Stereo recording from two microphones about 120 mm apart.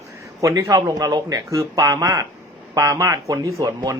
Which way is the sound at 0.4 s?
30° right (ahead or behind).